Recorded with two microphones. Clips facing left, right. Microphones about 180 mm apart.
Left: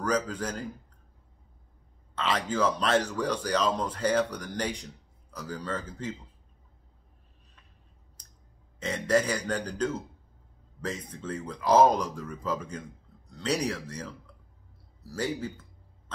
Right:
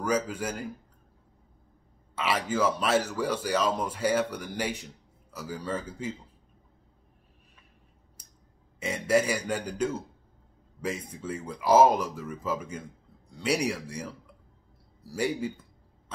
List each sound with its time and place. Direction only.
0.0 s speech: 10° right (ahead or behind)
2.1 s speech: 10° right (ahead or behind)
8.2 s clicking: 10° right (ahead or behind)
8.7 s speech: 10° right (ahead or behind)